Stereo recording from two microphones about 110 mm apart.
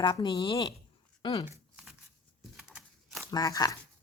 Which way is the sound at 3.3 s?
35° left (ahead or behind).